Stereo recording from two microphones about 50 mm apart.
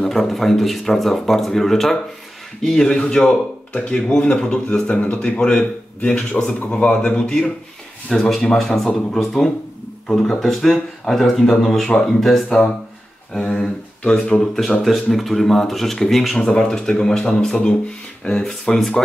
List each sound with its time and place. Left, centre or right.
0.1 s a man's voice: centre; by 4.0 s left
4.1 s a man's voice: centre
14.4 s a man's voice: centre